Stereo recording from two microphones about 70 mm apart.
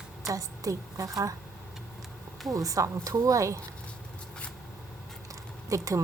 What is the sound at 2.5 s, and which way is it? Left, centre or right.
A woman's voice, right.